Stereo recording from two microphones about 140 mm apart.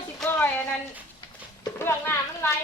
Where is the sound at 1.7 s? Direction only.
15° left (ahead or behind).